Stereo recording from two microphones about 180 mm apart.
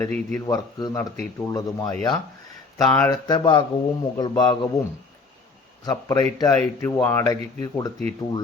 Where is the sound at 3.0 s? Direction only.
20° left (ahead or behind).